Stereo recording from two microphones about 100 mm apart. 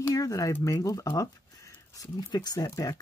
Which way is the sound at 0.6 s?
35° left (ahead or behind).